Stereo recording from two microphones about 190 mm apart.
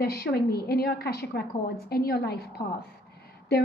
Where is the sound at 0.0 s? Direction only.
55° left (ahead or behind).